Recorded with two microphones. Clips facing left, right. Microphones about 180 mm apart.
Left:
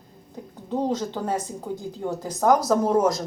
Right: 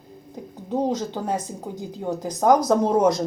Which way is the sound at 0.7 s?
10° right (ahead or behind).